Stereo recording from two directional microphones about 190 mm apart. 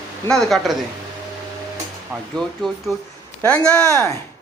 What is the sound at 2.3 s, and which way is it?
Speech, centre (ahead or behind).